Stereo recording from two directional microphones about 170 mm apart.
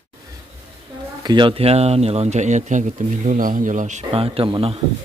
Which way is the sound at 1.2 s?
25° right (ahead or behind).